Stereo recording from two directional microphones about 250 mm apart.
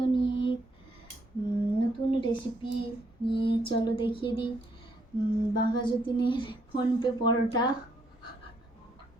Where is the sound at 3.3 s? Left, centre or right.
Centre.